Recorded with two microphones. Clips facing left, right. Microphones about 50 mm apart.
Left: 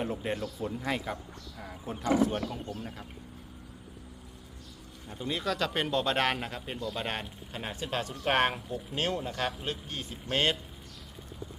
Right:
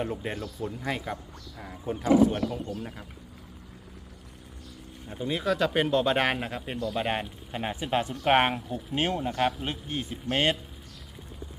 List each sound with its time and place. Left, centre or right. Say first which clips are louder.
0.0 s speech: right 1 dB; centre
5.0 s speech: right 4 dB; right
5.3 s a man's voice: right 5 dB; centre
10.1 s a man's voice: right 2 dB; centre